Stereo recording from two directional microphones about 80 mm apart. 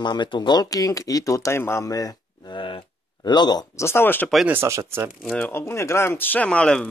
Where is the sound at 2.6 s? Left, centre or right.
Left.